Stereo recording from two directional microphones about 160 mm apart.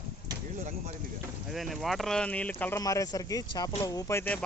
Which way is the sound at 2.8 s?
20° left (ahead or behind).